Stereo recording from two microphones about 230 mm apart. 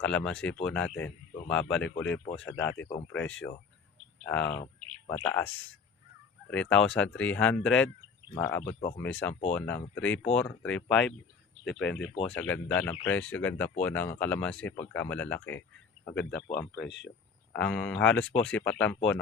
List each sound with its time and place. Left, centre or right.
0.0 s speech: centre
6.5 s speech: centre
16.6 s speech: left
17.5 s speech: centre